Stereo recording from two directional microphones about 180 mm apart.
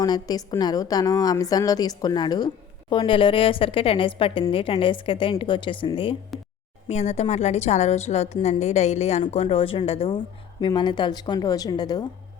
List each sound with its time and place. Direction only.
0.0 s a woman's voice: 20° left (ahead or behind)
6.8 s a woman's voice: 40° left (ahead or behind); by 12.0 s 20° left (ahead or behind)